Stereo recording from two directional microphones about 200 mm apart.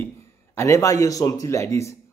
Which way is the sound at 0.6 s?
15° left (ahead or behind).